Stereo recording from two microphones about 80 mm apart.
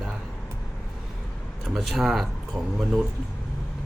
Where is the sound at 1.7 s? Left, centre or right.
Centre.